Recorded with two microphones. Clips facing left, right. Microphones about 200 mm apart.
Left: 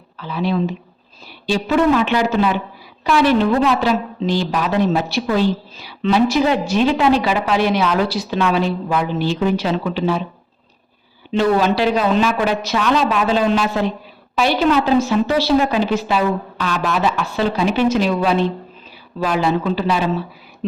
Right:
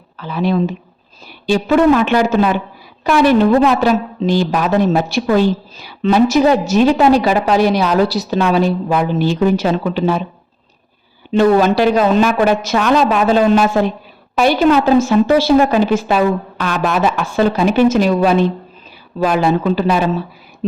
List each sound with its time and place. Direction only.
0.2 s a woman's voice: 50° right (ahead or behind)
11.3 s a woman's voice: 45° right (ahead or behind)